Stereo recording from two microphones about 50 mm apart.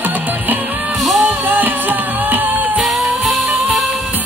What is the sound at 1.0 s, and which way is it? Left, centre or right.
Music, centre.